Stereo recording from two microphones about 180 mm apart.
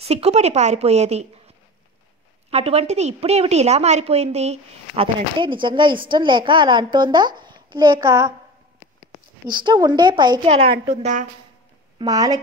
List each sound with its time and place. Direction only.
0.0 s a woman's voice: 35° right (ahead or behind)
2.5 s a woman's voice: 35° right (ahead or behind); by 8.3 s 15° right (ahead or behind)
9.5 s a child's voice: 25° right (ahead or behind); by 11.2 s 40° right (ahead or behind)
12.0 s a child's voice: 20° right (ahead or behind)